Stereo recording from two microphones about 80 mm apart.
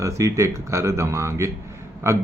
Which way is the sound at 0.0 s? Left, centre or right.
Right.